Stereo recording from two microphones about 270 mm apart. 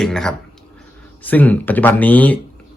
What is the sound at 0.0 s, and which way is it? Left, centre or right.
A man's voice, centre.